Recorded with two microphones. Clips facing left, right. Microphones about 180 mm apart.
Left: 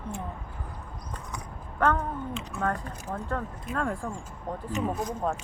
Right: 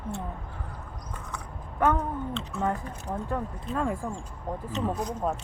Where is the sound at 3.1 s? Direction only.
15° right (ahead or behind).